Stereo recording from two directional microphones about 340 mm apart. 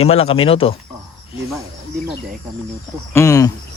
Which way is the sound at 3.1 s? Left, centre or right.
Centre.